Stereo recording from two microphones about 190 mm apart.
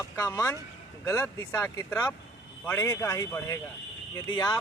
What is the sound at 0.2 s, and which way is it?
Speech, 15° left (ahead or behind).